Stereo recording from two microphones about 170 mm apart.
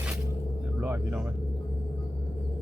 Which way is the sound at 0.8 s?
10° right (ahead or behind).